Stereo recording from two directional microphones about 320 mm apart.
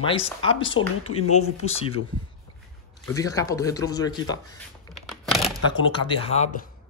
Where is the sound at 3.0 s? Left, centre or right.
Centre.